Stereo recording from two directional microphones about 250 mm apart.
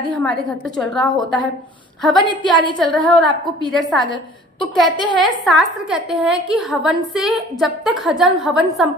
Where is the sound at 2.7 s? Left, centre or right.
Centre.